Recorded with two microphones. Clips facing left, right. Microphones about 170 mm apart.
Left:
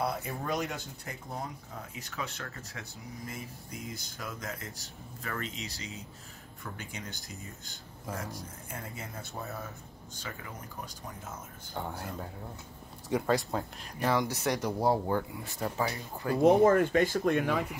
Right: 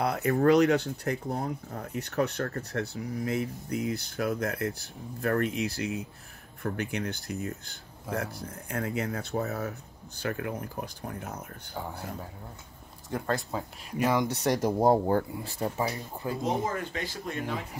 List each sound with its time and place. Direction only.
0.0 s speech: 70° right (ahead or behind)
11.7 s speech: centre (ahead or behind)
14.0 s speech: 20° right (ahead or behind)
14.3 s speech: 40° right (ahead or behind)
15.6 s speech: 20° right (ahead or behind)
16.4 s speech: 55° left (ahead or behind)